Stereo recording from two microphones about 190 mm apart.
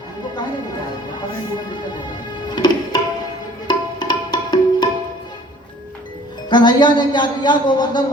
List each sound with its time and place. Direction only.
2.5 s music: 20° left (ahead or behind)
6.5 s speech: 25° left (ahead or behind)